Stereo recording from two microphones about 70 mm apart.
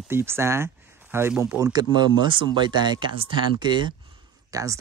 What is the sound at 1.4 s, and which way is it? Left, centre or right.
Speech, right.